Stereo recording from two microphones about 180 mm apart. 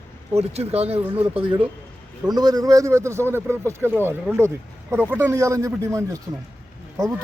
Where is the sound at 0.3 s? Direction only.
35° right (ahead or behind); by 6.1 s 15° right (ahead or behind).